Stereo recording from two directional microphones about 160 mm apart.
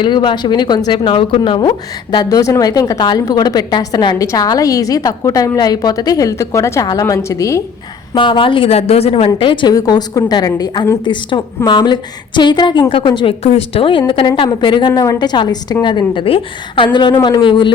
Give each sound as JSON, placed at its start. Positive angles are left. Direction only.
{"t": 0.0, "sound": "speech", "side_deg": 30}
{"t": 8.1, "sound": "a woman's voice", "side_deg": 30}